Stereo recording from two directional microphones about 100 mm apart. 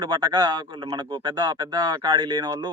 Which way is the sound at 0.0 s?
45° right (ahead or behind).